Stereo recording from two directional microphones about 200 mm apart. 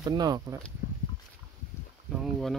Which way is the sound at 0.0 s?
20° right (ahead or behind).